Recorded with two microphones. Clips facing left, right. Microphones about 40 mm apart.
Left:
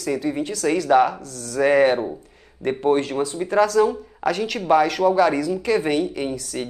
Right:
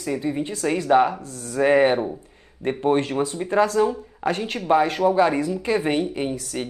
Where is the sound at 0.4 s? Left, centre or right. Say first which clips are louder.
Left 2 dB; right.